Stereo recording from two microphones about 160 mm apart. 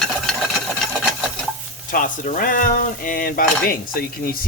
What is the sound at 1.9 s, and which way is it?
Frying, 55° left (ahead or behind).